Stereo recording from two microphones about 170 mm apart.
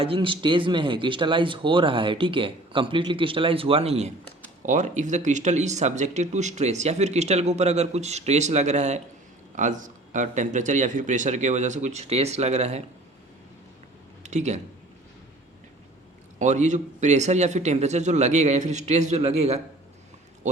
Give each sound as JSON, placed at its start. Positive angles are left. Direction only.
{"t": 0.0, "sound": "speech", "side_deg": -30}
{"t": 14.3, "sound": "speech", "side_deg": -45}
{"t": 16.4, "sound": "speech", "side_deg": -45}